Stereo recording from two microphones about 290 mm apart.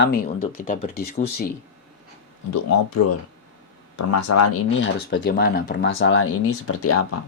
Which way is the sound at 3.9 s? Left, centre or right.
Left.